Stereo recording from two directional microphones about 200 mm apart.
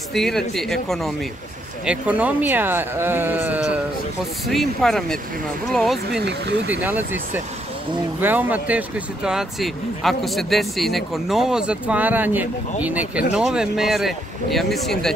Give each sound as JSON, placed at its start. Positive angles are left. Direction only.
{"t": 0.1, "sound": "speech", "side_deg": 0}
{"t": 6.2, "sound": "speech", "side_deg": -55}
{"t": 6.7, "sound": "speech", "side_deg": -10}
{"t": 8.2, "sound": "speech", "side_deg": -10}